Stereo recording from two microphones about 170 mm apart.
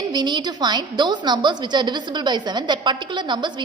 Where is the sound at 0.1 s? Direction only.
25° right (ahead or behind).